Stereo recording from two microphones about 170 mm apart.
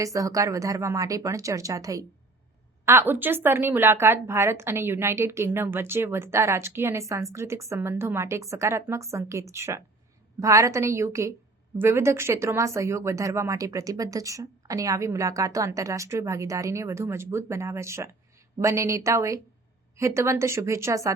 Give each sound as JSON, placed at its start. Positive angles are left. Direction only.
{"t": 0.0, "sound": "a woman's voice", "side_deg": -20}